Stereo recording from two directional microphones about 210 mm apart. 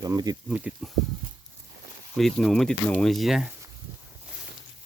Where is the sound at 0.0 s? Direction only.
15° right (ahead or behind).